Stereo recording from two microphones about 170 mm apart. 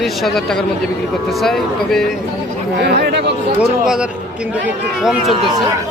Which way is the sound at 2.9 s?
75° right (ahead or behind).